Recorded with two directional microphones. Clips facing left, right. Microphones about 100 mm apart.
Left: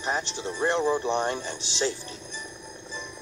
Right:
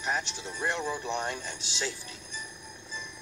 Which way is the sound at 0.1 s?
25° left (ahead or behind).